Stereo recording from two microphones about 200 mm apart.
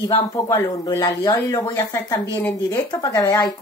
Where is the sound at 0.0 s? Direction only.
15° left (ahead or behind).